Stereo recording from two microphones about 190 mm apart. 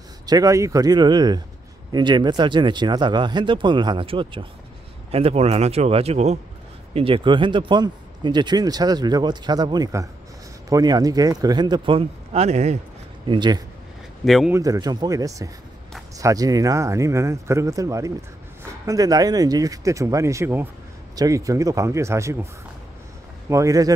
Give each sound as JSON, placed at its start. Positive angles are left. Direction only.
{"t": 0.3, "sound": "a man's voice", "side_deg": -20}
{"t": 13.3, "sound": "speech", "side_deg": -25}
{"t": 14.2, "sound": "a man's voice", "side_deg": 0}
{"t": 14.5, "sound": "speech", "side_deg": -20}
{"t": 23.5, "sound": "speech", "side_deg": -15}